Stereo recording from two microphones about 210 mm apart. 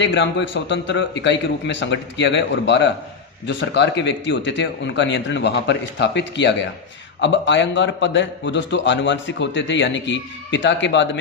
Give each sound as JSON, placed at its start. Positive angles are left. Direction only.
{"t": 0.0, "sound": "a man's voice", "side_deg": 60}